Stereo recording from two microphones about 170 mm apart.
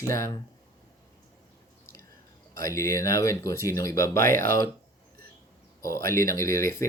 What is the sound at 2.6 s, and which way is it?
Speech, 15° left (ahead or behind).